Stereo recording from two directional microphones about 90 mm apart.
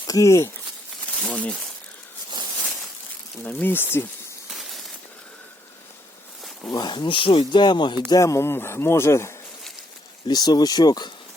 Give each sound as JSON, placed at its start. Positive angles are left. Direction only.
{"t": 0.1, "sound": "speech", "side_deg": 35}
{"t": 1.2, "sound": "speech", "side_deg": 10}
{"t": 3.4, "sound": "speech", "side_deg": 20}
{"t": 4.4, "sound": "a sound", "side_deg": 0}
{"t": 6.7, "sound": "speech", "side_deg": 45}
{"t": 6.9, "sound": "speech", "side_deg": 65}
{"t": 8.1, "sound": "speech", "side_deg": 35}
{"t": 10.2, "sound": "speech", "side_deg": 50}